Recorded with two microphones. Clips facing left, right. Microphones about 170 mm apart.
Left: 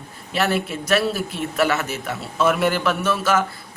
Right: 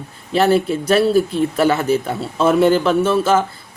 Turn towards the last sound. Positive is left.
turn(degrees=-30)  # may be behind; listen again after turning